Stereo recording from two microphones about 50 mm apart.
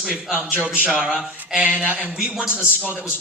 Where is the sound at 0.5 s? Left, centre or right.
Right.